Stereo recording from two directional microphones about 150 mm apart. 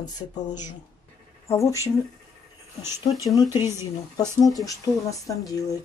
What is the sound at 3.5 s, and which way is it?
Speech, 15° right (ahead or behind).